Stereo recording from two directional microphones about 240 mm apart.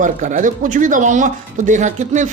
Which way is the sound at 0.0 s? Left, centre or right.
Right.